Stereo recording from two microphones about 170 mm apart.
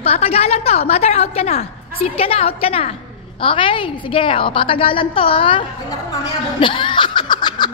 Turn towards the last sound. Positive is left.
turn(degrees=25)  # may be behind; listen again after turning